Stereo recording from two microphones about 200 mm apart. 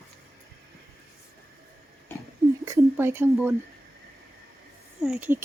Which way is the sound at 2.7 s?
10° right (ahead or behind).